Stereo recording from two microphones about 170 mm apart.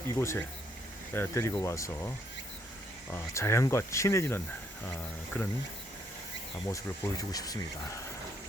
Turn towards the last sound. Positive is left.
turn(degrees=20)  # may be behind; listen again after turning